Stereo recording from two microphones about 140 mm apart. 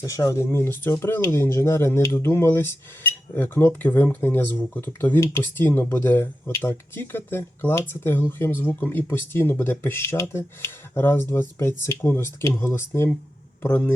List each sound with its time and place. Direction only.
0.0 s speech: 25° left (ahead or behind)